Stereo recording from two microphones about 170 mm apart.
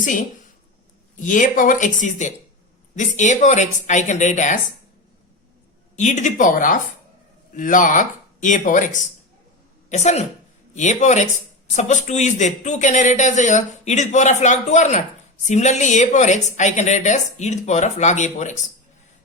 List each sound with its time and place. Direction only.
1.2 s speech: 50° left (ahead or behind)
6.0 s speech: 45° left (ahead or behind)